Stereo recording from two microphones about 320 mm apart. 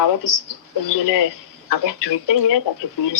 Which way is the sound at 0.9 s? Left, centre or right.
Left.